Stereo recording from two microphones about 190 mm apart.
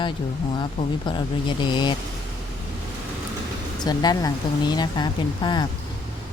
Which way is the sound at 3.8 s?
20° left (ahead or behind).